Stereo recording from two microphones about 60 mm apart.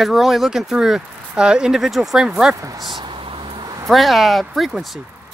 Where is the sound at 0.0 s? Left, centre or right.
Centre.